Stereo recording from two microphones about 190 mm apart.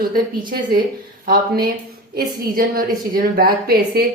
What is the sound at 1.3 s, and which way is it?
A woman's voice, 55° right (ahead or behind).